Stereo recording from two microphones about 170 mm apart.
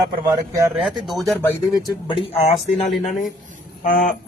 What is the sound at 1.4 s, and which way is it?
Speech, 25° left (ahead or behind).